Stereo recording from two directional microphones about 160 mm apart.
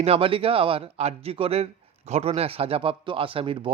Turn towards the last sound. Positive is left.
turn(degrees=-35)  # may be behind; listen again after turning